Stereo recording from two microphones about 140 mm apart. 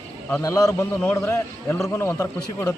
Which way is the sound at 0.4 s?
25° left (ahead or behind).